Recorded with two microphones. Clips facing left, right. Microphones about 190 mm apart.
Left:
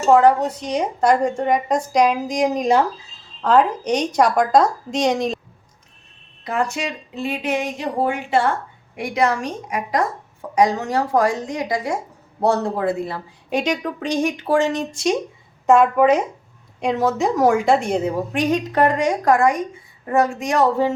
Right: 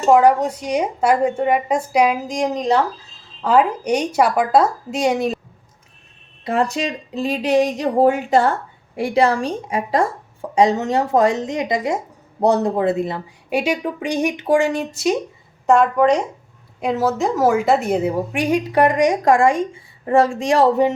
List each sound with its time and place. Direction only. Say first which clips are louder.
0.1 s a woman's voice: right 1 dB; 10° right (ahead or behind); by 2.8 s 10° left (ahead or behind)
3.4 s a woman's voice: even; 10° right (ahead or behind)
6.4 s speech: right 3 dB; 30° right (ahead or behind)
13.5 s a woman's voice: right 1 dB; 10° right (ahead or behind); by 20.7 s 30° right (ahead or behind)